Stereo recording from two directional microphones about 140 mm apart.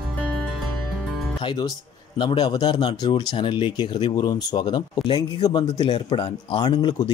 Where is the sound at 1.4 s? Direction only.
30° left (ahead or behind).